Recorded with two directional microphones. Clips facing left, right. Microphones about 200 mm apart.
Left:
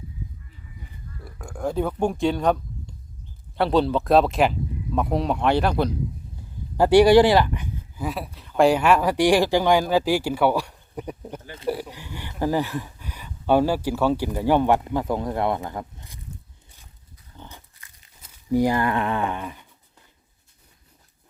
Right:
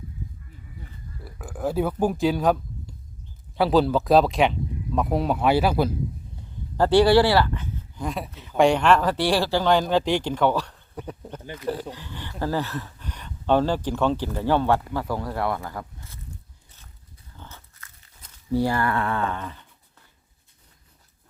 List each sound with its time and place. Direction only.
1.2 s speech: 5° right (ahead or behind)
6.7 s speech: 15° left (ahead or behind)
17.3 s a sound: 15° left (ahead or behind)